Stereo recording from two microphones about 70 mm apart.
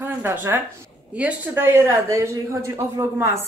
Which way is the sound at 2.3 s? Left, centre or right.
Right.